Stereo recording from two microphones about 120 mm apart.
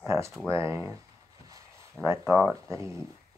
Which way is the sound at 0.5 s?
20° right (ahead or behind).